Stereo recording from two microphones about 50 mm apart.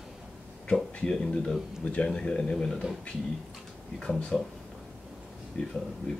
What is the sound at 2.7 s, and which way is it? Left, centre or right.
Speech, centre.